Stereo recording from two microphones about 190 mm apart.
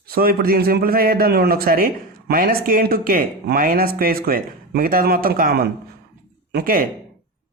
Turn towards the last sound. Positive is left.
turn(degrees=-50)  # may be behind; listen again after turning